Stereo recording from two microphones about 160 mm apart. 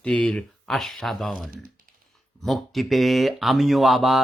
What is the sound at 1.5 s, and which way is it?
Typing, 60° right (ahead or behind).